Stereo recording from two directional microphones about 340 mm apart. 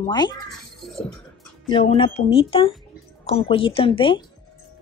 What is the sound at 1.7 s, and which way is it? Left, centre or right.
A woman's voice, centre.